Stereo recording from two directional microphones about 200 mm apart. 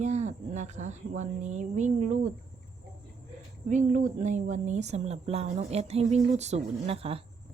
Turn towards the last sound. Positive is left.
turn(degrees=-30)  # may be behind; listen again after turning